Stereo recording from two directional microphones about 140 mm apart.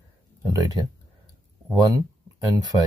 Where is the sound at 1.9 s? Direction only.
25° right (ahead or behind).